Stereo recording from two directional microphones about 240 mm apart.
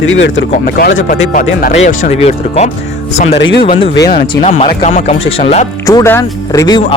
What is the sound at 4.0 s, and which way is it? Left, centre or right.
Speech, left.